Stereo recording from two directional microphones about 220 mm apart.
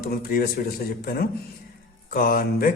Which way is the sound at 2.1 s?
40° left (ahead or behind).